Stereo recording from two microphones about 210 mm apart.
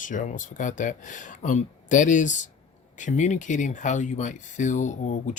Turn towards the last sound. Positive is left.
turn(degrees=35)  # may be behind; listen again after turning